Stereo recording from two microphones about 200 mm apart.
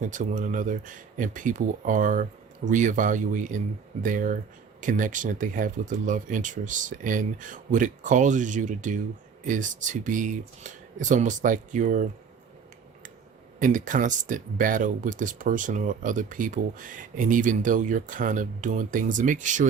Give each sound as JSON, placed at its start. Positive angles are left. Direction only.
{"t": 0.0, "sound": "speech", "side_deg": -40}
{"t": 13.6, "sound": "speech", "side_deg": -40}